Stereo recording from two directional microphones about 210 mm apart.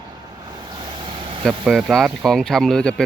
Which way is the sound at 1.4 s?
Centre (ahead or behind).